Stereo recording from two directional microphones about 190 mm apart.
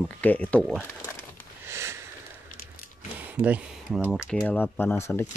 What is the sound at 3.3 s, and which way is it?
Speech, 10° right (ahead or behind).